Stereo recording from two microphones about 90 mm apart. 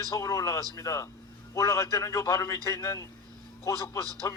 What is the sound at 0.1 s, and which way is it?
A man's voice, 40° left (ahead or behind).